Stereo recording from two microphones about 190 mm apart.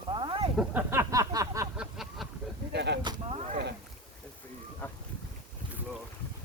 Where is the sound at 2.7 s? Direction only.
60° right (ahead or behind).